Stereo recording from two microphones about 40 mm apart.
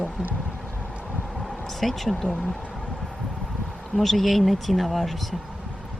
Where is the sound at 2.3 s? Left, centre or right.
Centre.